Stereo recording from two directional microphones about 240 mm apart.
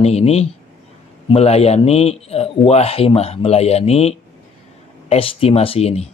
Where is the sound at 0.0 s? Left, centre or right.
Left.